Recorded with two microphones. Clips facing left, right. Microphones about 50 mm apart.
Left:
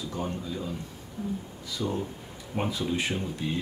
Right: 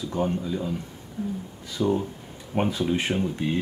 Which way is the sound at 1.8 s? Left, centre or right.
Centre.